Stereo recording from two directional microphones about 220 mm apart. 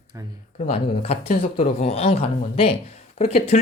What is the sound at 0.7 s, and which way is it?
Speech, 30° left (ahead or behind).